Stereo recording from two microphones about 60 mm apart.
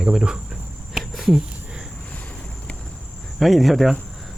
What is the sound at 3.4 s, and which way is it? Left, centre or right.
Speech, centre.